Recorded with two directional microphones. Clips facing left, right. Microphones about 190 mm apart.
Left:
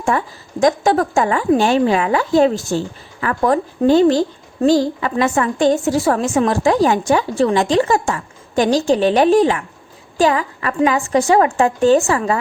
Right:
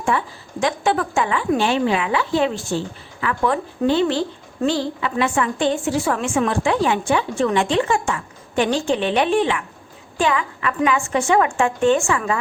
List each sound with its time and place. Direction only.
0.0 s a woman's voice: 45° left (ahead or behind)